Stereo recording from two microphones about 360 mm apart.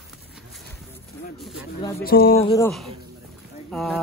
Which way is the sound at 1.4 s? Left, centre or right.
Centre.